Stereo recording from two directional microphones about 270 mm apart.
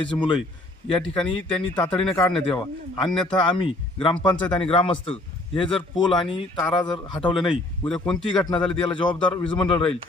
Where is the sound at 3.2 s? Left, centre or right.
Centre.